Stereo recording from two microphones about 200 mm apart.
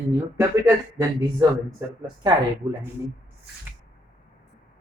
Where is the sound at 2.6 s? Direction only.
20° right (ahead or behind).